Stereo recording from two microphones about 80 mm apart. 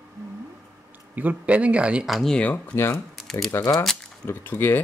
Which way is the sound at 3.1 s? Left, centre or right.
Centre.